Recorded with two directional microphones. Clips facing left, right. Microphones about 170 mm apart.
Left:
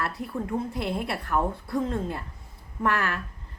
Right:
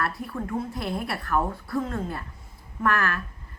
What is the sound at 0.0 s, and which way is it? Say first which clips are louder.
A woman's voice: right 1 dB; 20° left (ahead or behind).